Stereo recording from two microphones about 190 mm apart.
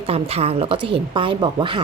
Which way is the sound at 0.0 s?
30° right (ahead or behind).